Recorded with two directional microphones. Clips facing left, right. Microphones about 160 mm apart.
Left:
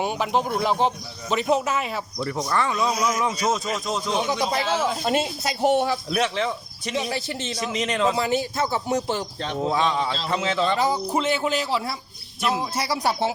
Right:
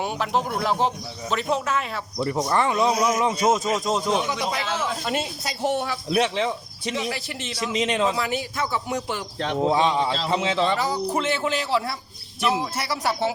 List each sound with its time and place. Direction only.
0.0 s a man's voice: centre (ahead or behind)
2.1 s speech: 20° right (ahead or behind)
4.3 s speech: 35° left (ahead or behind)
4.6 s speech: 10° left (ahead or behind)
5.0 s speech: 30° left (ahead or behind)
6.1 s speech: 25° right (ahead or behind)
6.9 s speech: 25° left (ahead or behind)
7.8 s speech: 20° right (ahead or behind)
8.1 s speech: 30° left (ahead or behind)
9.6 s speech: 20° right (ahead or behind)
10.8 s speech: 15° left (ahead or behind)